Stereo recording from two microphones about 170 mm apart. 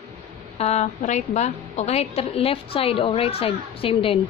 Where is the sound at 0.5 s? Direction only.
40° left (ahead or behind).